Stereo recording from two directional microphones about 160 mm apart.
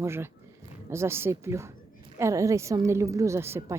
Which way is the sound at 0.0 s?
15° right (ahead or behind).